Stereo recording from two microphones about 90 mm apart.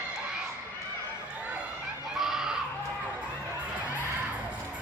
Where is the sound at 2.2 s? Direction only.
5° right (ahead or behind).